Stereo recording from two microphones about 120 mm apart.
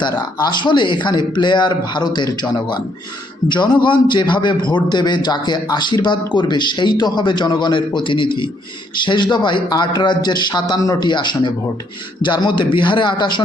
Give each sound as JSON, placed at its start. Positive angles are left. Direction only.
{"t": 0.0, "sound": "a man's voice", "side_deg": 35}